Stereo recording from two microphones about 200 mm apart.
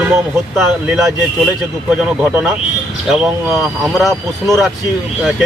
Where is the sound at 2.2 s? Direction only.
10° right (ahead or behind).